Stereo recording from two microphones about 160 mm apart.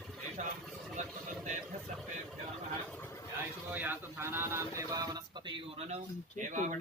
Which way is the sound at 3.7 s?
10° right (ahead or behind).